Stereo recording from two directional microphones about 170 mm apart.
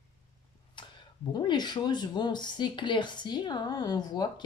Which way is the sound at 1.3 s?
25° left (ahead or behind).